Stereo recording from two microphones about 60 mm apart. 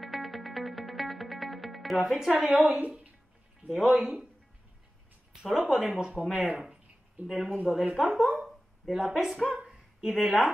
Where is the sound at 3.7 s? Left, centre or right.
Centre.